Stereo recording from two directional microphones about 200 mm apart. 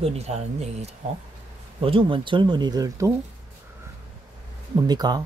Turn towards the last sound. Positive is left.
turn(degrees=-20)  # may be behind; listen again after turning